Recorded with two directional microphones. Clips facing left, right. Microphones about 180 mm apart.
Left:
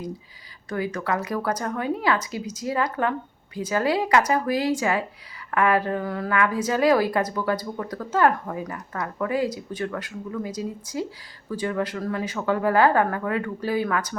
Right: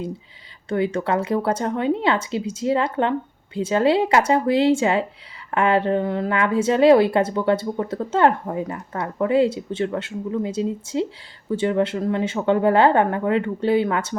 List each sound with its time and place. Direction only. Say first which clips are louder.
0.7 s a woman's voice: right 5 dB; 25° right (ahead or behind)